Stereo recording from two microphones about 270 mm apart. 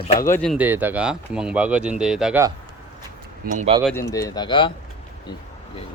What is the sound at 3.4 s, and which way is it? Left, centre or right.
Speech, right.